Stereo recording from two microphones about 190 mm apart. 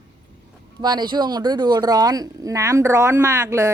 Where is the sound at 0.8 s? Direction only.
20° right (ahead or behind).